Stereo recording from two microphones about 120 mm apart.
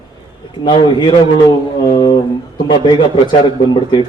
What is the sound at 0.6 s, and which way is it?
Speech, 40° left (ahead or behind).